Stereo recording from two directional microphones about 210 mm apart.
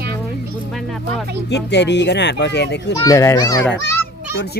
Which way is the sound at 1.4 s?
55° left (ahead or behind).